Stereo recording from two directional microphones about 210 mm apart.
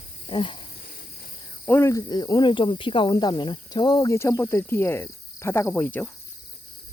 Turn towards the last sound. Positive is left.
turn(degrees=10)  # may be behind; listen again after turning